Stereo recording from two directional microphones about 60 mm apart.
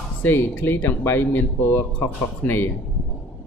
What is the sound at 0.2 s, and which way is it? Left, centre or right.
Speech, left.